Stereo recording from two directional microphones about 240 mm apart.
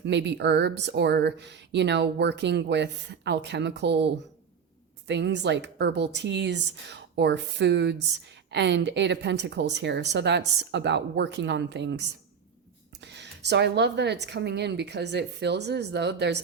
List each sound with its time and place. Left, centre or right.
0.0 s speech: right